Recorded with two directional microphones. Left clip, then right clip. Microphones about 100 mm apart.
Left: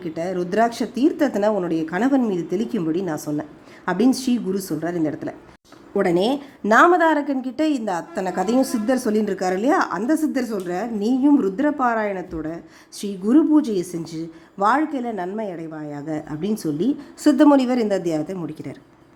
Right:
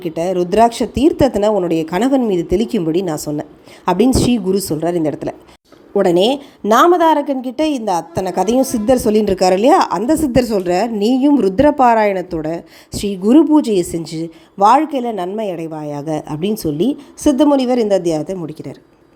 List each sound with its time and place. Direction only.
0.0 s a woman's voice: 30° right (ahead or behind)
17.2 s speech: 15° right (ahead or behind)
17.7 s a woman's voice: 30° right (ahead or behind)